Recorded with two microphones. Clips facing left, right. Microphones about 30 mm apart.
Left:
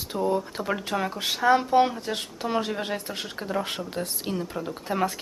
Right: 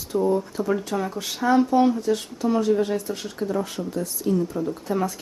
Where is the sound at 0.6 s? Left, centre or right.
Left.